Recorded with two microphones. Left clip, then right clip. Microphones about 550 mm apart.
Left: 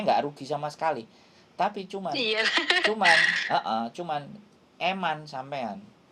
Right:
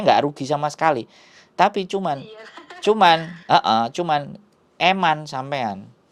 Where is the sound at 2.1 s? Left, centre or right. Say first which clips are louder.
Left 12 dB; left.